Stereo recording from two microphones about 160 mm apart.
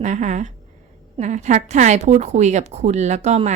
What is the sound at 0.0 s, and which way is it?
Speech, 50° right (ahead or behind).